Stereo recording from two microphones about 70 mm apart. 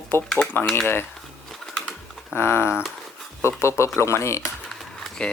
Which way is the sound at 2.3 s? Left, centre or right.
Left.